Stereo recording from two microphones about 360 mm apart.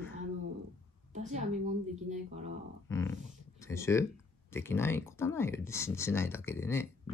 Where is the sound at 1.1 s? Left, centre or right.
Centre.